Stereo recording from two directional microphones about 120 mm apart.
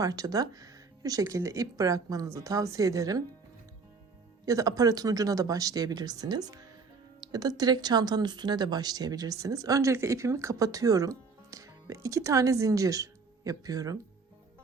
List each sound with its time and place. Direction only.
0.0 s speech: 30° right (ahead or behind)
4.4 s speech: 30° right (ahead or behind)